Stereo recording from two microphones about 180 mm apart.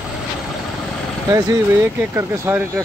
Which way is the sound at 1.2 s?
15° right (ahead or behind).